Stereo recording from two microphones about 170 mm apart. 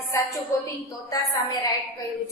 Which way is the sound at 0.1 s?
15° left (ahead or behind).